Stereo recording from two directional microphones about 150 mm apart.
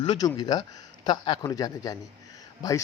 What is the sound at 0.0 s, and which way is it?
A man's voice, 30° left (ahead or behind).